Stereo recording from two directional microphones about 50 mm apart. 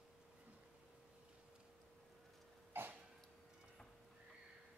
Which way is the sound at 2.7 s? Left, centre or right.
Right.